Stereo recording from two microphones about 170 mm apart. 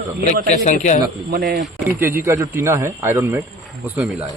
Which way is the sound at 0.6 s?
45° left (ahead or behind).